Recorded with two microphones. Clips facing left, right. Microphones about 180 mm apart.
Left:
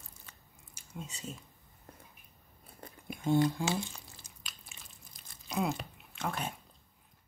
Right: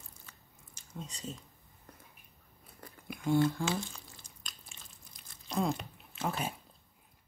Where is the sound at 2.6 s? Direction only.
25° left (ahead or behind).